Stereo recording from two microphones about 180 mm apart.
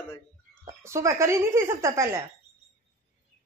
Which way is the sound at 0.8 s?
15° right (ahead or behind).